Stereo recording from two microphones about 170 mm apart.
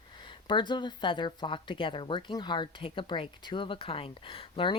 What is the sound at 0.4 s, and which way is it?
Speech, 25° left (ahead or behind).